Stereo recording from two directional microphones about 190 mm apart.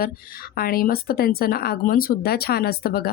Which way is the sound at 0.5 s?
50° left (ahead or behind).